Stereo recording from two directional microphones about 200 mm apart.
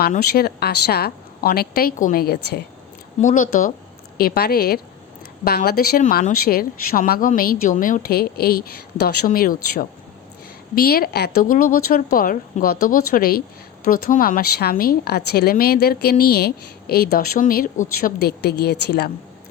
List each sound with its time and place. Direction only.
0.0 s speech: 50° left (ahead or behind)
3.2 s speech: 40° left (ahead or behind)